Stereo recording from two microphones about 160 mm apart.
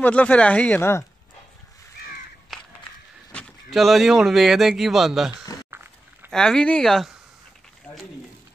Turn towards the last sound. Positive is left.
turn(degrees=0)  # may be behind; listen again after turning